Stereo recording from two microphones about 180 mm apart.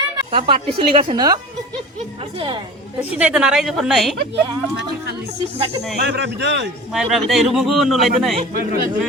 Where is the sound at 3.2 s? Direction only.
5° right (ahead or behind).